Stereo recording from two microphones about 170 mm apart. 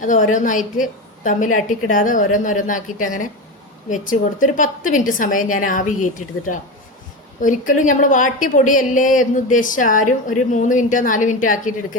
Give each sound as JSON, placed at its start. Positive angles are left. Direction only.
{"t": 0.0, "sound": "a woman's voice", "side_deg": 50}